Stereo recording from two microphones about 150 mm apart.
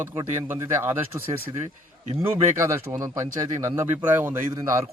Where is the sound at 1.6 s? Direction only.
45° right (ahead or behind).